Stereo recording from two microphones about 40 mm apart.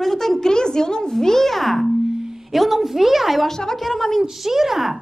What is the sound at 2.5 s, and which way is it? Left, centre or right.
Speech, centre.